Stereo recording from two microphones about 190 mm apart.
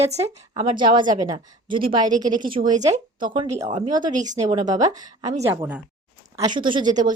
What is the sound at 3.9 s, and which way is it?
Speech, 20° right (ahead or behind).